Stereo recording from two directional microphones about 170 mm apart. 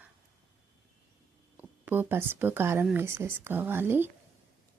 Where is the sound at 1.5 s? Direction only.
10° right (ahead or behind).